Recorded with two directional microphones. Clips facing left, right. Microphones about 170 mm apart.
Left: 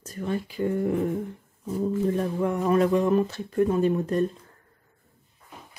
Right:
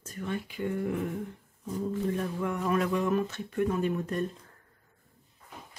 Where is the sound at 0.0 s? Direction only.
35° left (ahead or behind).